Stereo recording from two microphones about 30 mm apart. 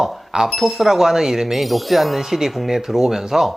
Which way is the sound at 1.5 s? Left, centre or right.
Centre.